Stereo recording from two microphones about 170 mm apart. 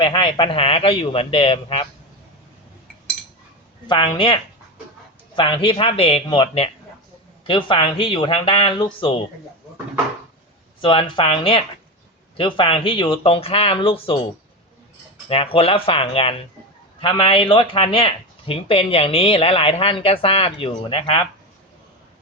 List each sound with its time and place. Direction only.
0.0 s speech: 30° left (ahead or behind)
3.8 s speech: 30° left (ahead or behind)
5.4 s speech: 30° left (ahead or behind)
10.8 s speech: 30° left (ahead or behind)
15.3 s speech: 35° left (ahead or behind)